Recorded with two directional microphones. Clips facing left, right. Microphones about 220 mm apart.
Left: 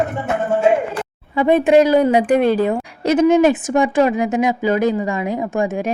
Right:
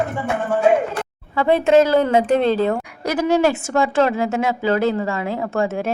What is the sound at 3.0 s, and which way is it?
Speech, 25° left (ahead or behind).